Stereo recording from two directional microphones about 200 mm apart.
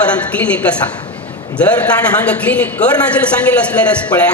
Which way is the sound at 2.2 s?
5° left (ahead or behind).